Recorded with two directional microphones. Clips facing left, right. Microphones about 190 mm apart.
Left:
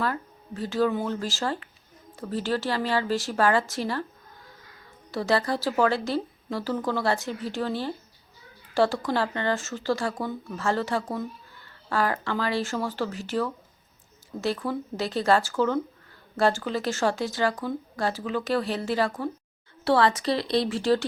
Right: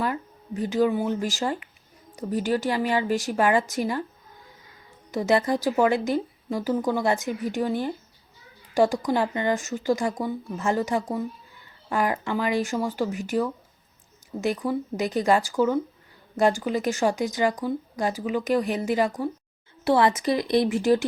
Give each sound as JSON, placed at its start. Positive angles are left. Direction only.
{"t": 0.0, "sound": "speech", "side_deg": -15}
{"t": 5.1, "sound": "speech", "side_deg": -20}